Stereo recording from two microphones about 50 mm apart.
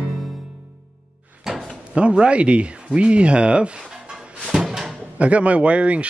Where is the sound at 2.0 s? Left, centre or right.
Right.